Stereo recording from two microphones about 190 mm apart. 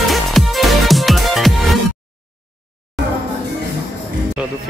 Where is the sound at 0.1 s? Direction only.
Centre (ahead or behind).